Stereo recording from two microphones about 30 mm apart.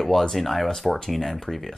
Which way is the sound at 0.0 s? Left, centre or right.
Centre.